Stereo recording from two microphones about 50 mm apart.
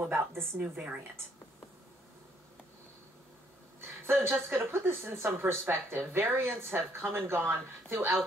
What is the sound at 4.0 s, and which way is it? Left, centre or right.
A woman's voice, right.